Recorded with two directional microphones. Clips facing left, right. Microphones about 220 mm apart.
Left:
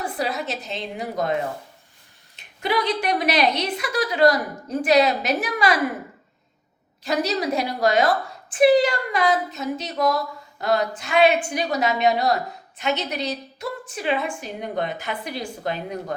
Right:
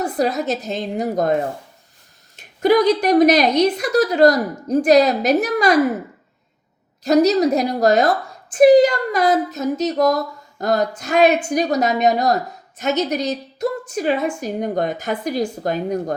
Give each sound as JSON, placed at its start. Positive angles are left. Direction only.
{"t": 0.0, "sound": "a woman's voice", "side_deg": -40}
{"t": 7.0, "sound": "a woman's voice", "side_deg": -40}